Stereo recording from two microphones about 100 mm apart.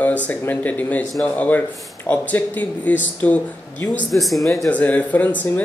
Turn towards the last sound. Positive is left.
turn(degrees=15)  # may be behind; listen again after turning